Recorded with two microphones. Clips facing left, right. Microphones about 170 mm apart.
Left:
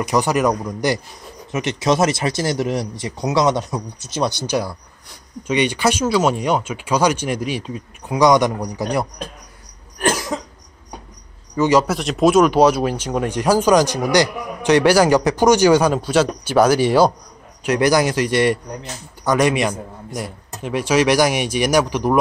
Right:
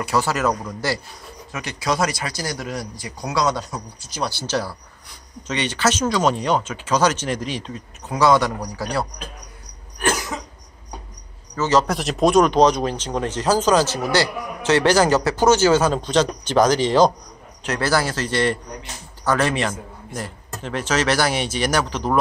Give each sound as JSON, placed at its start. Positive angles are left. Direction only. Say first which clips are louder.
{"t": 0.0, "sound": "speech", "louder": "left 3 dB", "side_deg": 15}
{"t": 11.5, "sound": "speech", "louder": "left 3 dB", "side_deg": 15}